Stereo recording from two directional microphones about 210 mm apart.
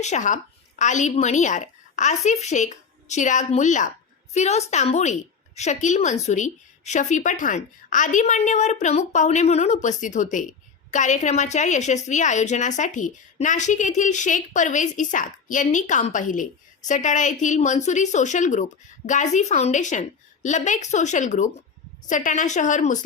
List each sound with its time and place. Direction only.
0.0 s a woman's voice: 35° left (ahead or behind)